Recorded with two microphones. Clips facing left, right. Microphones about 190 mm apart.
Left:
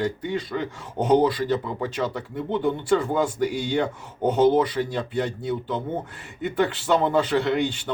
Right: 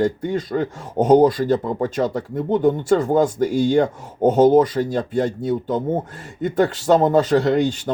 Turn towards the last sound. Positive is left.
turn(degrees=-40)  # may be behind; listen again after turning